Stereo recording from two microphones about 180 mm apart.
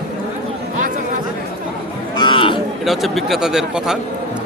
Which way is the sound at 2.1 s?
25° left (ahead or behind).